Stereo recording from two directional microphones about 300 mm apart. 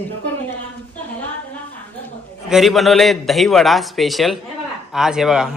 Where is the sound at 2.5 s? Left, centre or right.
Centre.